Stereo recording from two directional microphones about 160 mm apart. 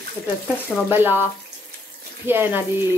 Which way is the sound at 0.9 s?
15° right (ahead or behind).